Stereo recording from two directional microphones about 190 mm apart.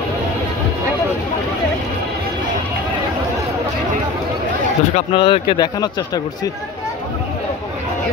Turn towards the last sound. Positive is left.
turn(degrees=20)  # may be behind; listen again after turning